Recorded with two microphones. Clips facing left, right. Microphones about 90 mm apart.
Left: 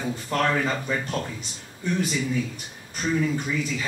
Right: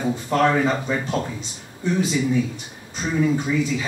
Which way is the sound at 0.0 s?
15° right (ahead or behind).